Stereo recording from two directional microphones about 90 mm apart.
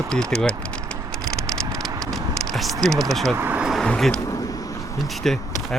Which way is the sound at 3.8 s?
5° left (ahead or behind).